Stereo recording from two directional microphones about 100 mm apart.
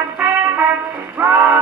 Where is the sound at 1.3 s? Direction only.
20° right (ahead or behind).